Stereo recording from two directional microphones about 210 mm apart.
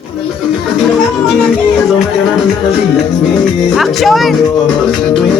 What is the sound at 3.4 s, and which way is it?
Speech, centre (ahead or behind).